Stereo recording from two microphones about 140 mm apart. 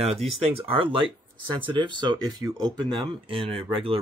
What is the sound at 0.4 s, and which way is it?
Speech, 40° right (ahead or behind).